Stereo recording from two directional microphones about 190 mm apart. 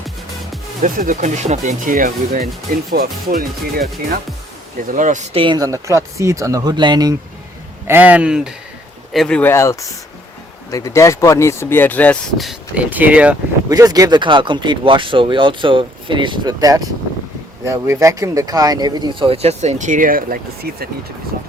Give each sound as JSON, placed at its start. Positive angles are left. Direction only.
{"t": 0.8, "sound": "speech", "side_deg": -40}
{"t": 7.9, "sound": "speech", "side_deg": -10}
{"t": 13.7, "sound": "speech", "side_deg": -20}